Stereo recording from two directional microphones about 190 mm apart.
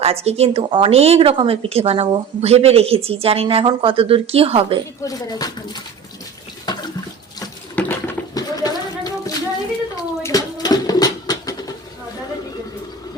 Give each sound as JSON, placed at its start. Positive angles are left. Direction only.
{"t": 0.0, "sound": "a woman's voice", "side_deg": -30}
{"t": 5.0, "sound": "speech", "side_deg": 20}
{"t": 6.7, "sound": "water", "side_deg": 20}
{"t": 7.8, "sound": "a sound", "side_deg": 10}